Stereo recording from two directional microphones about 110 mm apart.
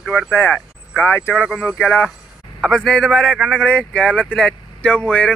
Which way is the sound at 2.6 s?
5° left (ahead or behind).